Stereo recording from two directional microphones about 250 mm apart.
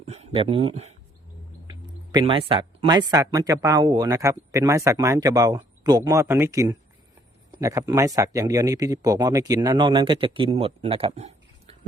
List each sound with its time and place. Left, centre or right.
0.0 s speech: right